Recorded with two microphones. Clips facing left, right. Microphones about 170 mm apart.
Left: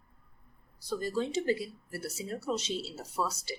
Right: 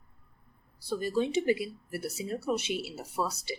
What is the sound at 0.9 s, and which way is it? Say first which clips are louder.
A woman's voice: right 3 dB; 15° right (ahead or behind).